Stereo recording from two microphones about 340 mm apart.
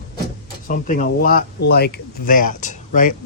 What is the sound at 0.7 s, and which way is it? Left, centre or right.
Speech, left.